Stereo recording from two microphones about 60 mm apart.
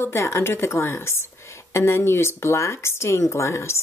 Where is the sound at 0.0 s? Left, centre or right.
Left.